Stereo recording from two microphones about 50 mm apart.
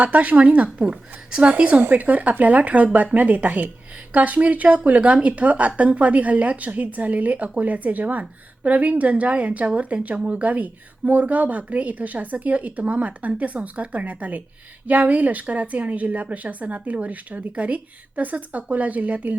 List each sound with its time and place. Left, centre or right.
0.0 s a woman's voice: right
1.8 s a woman's voice: right